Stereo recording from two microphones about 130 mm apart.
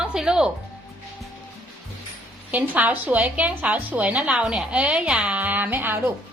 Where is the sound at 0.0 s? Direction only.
5° right (ahead or behind).